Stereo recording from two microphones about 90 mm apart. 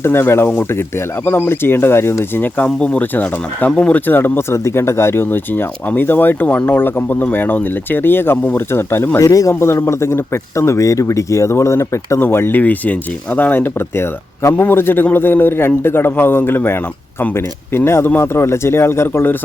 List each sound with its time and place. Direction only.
0.0 s a man's voice: 25° left (ahead or behind)
9.1 s a man's voice: 40° left (ahead or behind)